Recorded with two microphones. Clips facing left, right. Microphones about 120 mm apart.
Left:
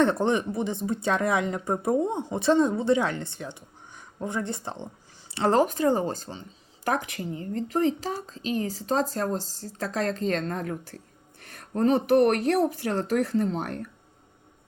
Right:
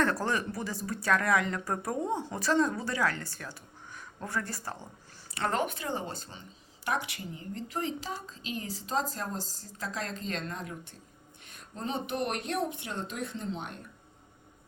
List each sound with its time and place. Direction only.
0.0 s a woman's voice: 25° left (ahead or behind); by 10.8 s 45° left (ahead or behind)
11.4 s speech: 60° left (ahead or behind)
13.4 s speech: 45° left (ahead or behind)